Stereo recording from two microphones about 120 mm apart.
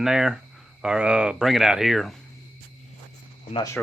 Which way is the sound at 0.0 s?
5° right (ahead or behind).